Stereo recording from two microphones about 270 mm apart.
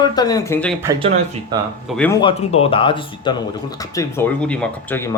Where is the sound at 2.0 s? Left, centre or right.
Centre.